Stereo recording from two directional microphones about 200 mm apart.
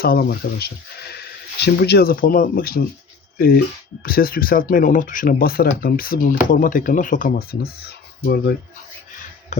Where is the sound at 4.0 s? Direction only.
45° left (ahead or behind).